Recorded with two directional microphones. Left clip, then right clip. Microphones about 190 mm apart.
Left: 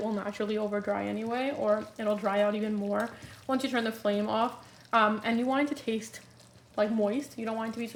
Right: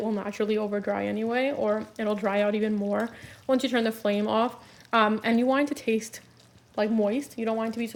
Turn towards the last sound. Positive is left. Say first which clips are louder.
# right 5 dB
turn(degrees=-45)  # may be behind; listen again after turning